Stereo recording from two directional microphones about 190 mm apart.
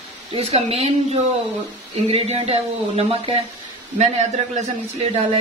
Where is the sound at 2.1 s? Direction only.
30° right (ahead or behind).